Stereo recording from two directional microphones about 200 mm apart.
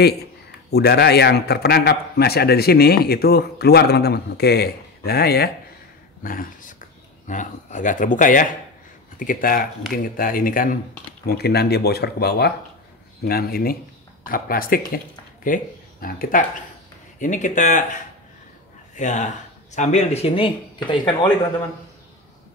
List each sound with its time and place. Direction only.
0.7 s a man's voice: 55° left (ahead or behind); by 21.3 s 25° left (ahead or behind)